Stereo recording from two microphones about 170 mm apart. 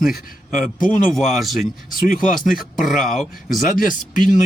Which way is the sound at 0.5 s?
55° left (ahead or behind).